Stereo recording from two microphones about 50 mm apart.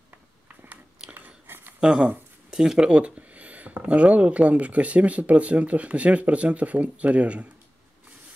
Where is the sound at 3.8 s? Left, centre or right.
Right.